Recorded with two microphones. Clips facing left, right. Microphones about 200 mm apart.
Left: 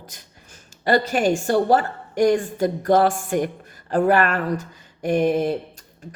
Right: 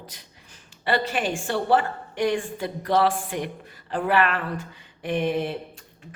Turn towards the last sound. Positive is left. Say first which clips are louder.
# left 6 dB
turn(degrees=40)  # may be behind; listen again after turning